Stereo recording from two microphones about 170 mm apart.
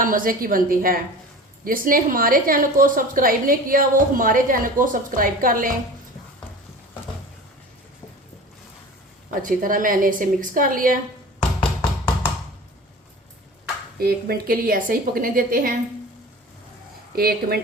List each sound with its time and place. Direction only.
0.0 s a woman's voice: 55° right (ahead or behind)
9.3 s a woman's voice: 50° right (ahead or behind)
14.0 s a woman's voice: 65° right (ahead or behind)
17.2 s a woman's voice: 65° right (ahead or behind)